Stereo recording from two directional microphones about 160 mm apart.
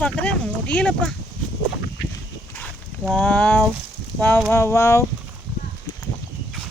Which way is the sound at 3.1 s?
10° left (ahead or behind).